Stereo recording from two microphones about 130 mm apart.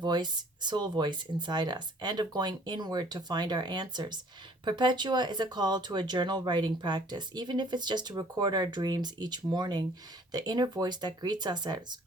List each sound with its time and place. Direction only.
0.0 s speech: 35° right (ahead or behind)